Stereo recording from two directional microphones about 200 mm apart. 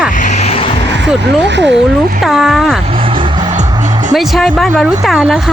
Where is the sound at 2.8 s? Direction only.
25° right (ahead or behind).